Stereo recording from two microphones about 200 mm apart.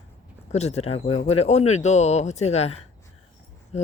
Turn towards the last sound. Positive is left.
turn(degrees=35)  # may be behind; listen again after turning